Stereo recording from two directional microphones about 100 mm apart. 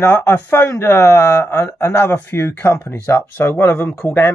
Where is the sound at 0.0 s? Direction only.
25° left (ahead or behind).